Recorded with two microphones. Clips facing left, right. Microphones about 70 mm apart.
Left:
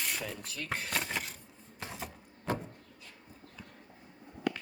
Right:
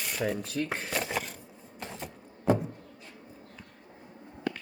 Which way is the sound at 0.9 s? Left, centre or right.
Centre.